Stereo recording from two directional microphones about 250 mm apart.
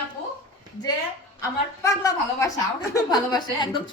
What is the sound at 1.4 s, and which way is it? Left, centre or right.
A woman's voice, centre.